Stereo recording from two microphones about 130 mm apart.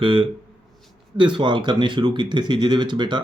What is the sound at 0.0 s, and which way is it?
Speech, 45° right (ahead or behind).